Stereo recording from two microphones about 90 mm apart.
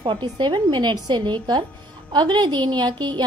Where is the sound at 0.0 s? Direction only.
65° right (ahead or behind).